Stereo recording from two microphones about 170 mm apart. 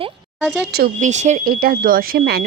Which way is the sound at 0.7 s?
65° right (ahead or behind).